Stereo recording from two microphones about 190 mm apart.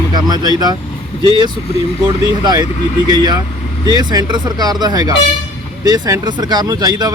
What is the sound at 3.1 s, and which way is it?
Speech, 20° right (ahead or behind).